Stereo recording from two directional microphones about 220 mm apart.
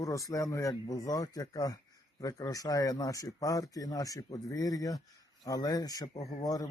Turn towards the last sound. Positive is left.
turn(degrees=15)  # may be behind; listen again after turning